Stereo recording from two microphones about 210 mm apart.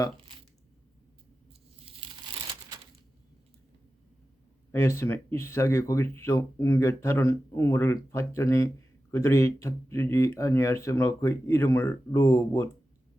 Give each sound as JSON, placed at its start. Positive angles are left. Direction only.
{"t": 1.8, "sound": "crumpling", "side_deg": -25}
{"t": 4.7, "sound": "speech", "side_deg": 15}